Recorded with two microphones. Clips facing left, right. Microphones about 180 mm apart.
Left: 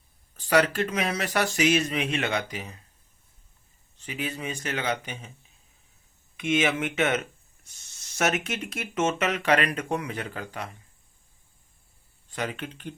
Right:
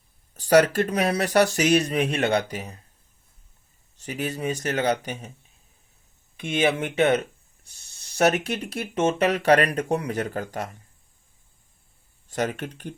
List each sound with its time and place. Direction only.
0.3 s speech: 40° right (ahead or behind)
3.9 s speech: 40° right (ahead or behind)
6.3 s speech: 35° right (ahead or behind)
12.3 s speech: 45° right (ahead or behind)